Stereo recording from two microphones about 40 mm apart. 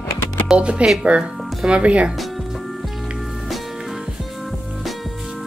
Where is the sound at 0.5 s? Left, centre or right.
Right.